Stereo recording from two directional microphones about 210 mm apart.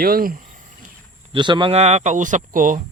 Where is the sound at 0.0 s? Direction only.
45° right (ahead or behind).